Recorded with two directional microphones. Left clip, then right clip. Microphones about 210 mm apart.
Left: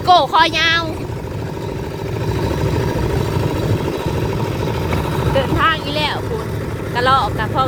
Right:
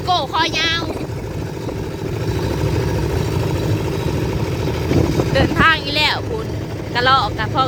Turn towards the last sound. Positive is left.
turn(degrees=-5)  # may be behind; listen again after turning